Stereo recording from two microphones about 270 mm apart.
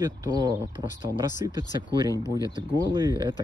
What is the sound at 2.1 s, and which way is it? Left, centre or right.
Speech, centre.